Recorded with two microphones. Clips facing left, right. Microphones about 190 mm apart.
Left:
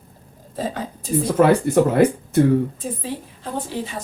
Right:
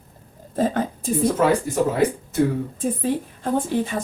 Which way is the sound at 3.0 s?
50° right (ahead or behind).